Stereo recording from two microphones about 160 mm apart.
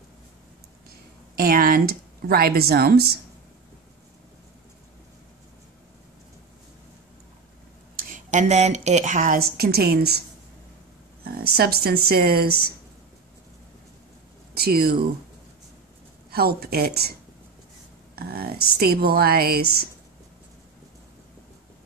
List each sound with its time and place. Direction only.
1.3 s speech: 65° right (ahead or behind)
8.0 s speech: 50° right (ahead or behind); by 10.2 s 80° right
11.2 s speech: 75° right (ahead or behind)
14.5 s speech: 75° right (ahead or behind)
16.3 s speech: 75° right (ahead or behind)
18.1 s speech: 75° right (ahead or behind)